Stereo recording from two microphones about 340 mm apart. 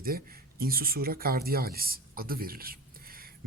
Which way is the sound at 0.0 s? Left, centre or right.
Right.